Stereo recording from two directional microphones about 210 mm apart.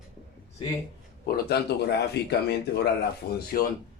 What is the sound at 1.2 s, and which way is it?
Speech, 50° left (ahead or behind).